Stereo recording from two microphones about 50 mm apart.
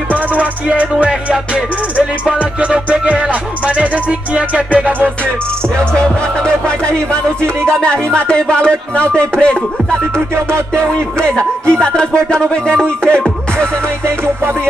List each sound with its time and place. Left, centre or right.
0.1 s music: right
6.4 s speech: centre
10.1 s music: right
10.7 s speech: left
14.0 s music: right